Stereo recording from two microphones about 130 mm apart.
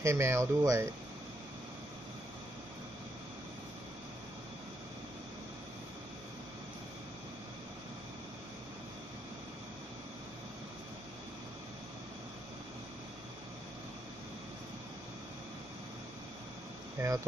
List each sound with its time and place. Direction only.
0.0 s speech: 20° right (ahead or behind)
17.0 s insect: 20° right (ahead or behind)